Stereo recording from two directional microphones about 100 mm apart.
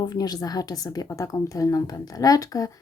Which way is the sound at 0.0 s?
40° left (ahead or behind).